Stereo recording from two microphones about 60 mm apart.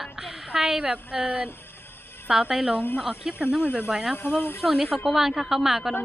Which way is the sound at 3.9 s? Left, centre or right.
Centre.